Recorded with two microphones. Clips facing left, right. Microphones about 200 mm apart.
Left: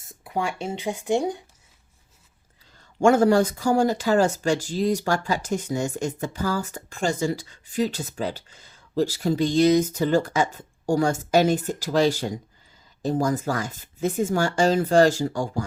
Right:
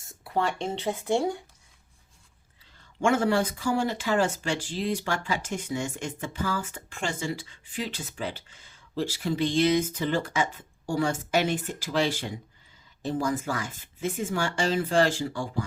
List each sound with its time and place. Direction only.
0.1 s speech: 15° left (ahead or behind)
3.0 s speech: 40° left (ahead or behind)